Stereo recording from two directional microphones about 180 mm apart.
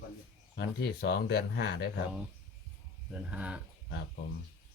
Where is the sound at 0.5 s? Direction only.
65° left (ahead or behind).